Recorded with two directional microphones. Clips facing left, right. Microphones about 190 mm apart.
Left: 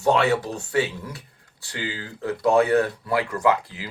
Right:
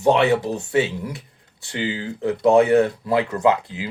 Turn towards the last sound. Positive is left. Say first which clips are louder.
# right 3 dB
turn(degrees=-20)  # may be behind; listen again after turning